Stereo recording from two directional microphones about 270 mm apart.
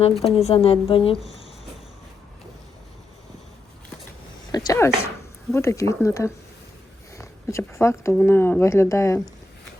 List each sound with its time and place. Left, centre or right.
0.0 s a woman's voice: left
4.5 s speech: centre